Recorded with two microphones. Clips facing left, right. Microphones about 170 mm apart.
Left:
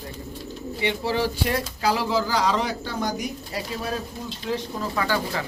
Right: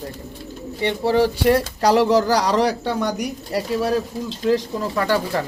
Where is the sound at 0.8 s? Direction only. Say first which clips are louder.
Right 7 dB; 55° right (ahead or behind); by 4.0 s 80° right.